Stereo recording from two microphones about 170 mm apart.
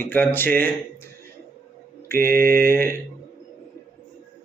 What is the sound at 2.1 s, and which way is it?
Mantra, 60° right (ahead or behind).